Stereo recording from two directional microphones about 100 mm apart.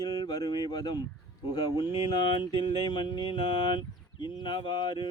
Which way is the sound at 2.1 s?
50° left (ahead or behind).